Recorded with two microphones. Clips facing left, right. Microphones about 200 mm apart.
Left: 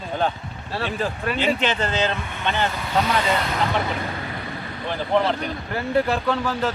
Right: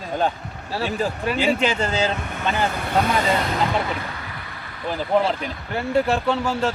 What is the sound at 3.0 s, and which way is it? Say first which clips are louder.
Speech: right 1 dB; 50° right (ahead or behind).